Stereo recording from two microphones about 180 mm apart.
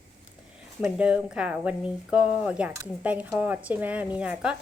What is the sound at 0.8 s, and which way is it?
Speech, 5° right (ahead or behind).